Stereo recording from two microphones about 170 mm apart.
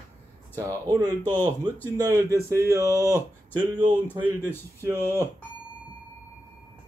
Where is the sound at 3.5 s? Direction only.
25° right (ahead or behind).